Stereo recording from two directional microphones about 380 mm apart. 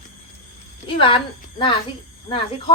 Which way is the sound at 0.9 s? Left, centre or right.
Centre.